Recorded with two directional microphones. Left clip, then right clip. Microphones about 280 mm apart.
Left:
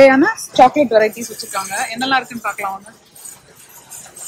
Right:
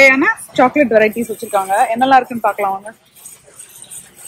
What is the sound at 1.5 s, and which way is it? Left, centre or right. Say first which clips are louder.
Speech: right 8 dB; centre.